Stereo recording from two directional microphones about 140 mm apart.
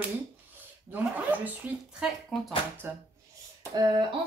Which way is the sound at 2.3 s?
Centre (ahead or behind).